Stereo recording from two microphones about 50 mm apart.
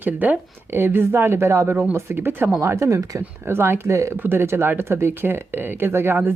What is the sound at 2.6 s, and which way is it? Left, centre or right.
Speech, right.